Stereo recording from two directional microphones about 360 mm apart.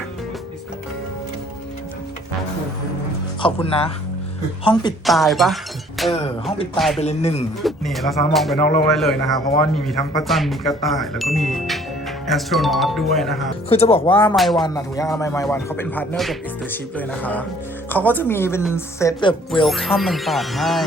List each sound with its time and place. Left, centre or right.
3.4 s speech: centre
5.0 s music: centre
7.0 s speech: centre
7.6 s music: centre
13.7 s speech: centre
14.3 s music: centre
17.9 s speech: centre
19.6 s music: centre